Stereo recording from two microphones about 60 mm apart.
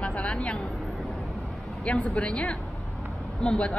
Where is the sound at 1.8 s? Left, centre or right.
Centre.